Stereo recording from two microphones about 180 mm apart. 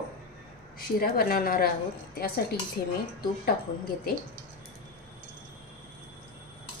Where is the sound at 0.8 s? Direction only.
55° left (ahead or behind).